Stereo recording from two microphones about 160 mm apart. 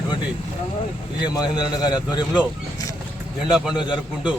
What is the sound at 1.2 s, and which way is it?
Speech, 25° left (ahead or behind).